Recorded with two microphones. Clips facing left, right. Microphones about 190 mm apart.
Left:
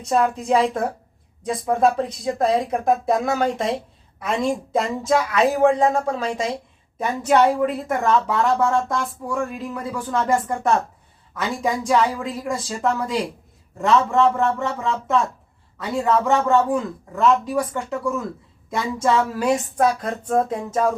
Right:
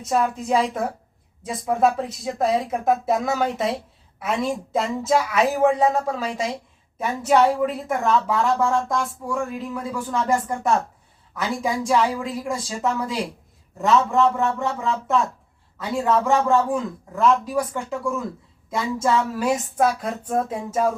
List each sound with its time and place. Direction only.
0.0 s a woman's voice: 5° right (ahead or behind)
4.7 s a woman's voice: 5° right (ahead or behind)